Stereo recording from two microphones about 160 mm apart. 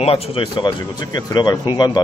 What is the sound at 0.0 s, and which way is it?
Speech, 35° left (ahead or behind).